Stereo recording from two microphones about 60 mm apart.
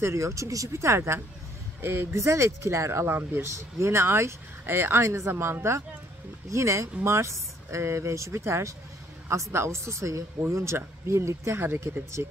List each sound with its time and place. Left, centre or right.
0.0 s speech: right